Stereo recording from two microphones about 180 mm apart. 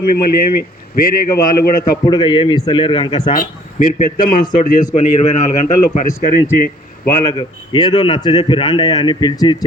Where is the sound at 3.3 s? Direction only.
45° left (ahead or behind).